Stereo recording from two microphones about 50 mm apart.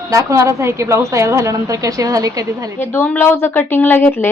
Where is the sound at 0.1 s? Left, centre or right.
Right.